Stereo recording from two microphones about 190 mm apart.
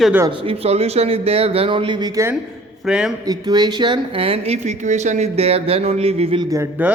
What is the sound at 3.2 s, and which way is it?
Speech, 20° right (ahead or behind).